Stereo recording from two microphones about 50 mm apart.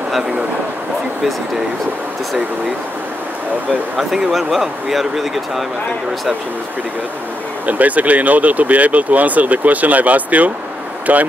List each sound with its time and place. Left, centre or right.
4.3 s speech: centre
7.6 s speech: right